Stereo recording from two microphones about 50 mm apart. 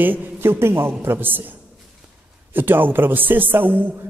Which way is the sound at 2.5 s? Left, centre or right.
Right.